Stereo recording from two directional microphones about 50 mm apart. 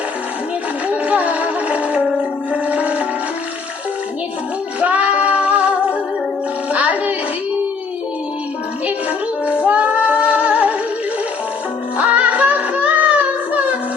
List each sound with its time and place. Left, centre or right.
0.9 s music: right
4.8 s music: right
9.6 s female singing: right
11.9 s music: right